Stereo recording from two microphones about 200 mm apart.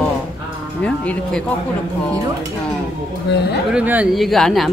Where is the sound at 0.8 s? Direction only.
5° left (ahead or behind).